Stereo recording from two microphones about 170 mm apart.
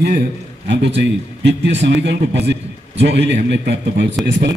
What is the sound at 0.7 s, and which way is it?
A man's voice, 90° right.